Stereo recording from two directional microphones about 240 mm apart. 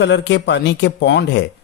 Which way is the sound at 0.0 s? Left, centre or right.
Left.